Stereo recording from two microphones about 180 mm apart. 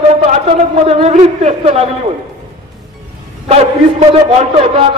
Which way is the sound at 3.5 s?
35° right (ahead or behind).